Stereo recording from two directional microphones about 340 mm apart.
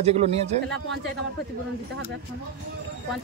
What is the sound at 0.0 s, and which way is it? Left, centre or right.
Speech, centre.